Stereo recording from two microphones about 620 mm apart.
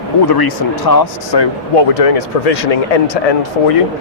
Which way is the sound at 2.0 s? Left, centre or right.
Left.